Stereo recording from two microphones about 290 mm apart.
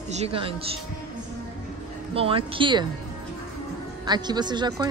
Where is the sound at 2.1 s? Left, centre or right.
Centre.